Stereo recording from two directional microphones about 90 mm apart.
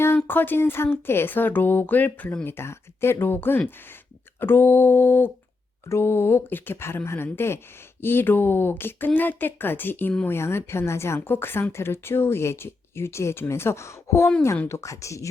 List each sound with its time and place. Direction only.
0.3 s speech: 20° left (ahead or behind)